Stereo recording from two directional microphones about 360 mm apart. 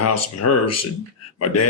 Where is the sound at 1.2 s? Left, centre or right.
Left.